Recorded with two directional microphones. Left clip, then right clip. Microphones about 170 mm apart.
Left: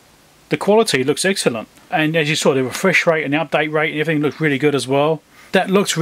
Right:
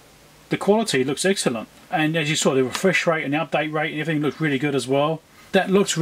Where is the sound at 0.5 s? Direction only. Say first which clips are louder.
Left 6 dB; 25° left (ahead or behind).